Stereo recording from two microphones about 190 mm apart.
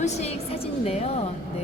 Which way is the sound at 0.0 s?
35° left (ahead or behind).